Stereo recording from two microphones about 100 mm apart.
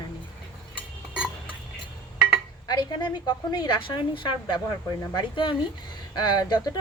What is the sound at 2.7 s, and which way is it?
Speech, 45° left (ahead or behind).